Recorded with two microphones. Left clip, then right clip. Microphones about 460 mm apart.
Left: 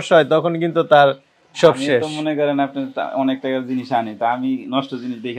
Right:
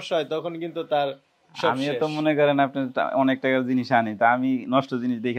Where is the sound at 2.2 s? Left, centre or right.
Right.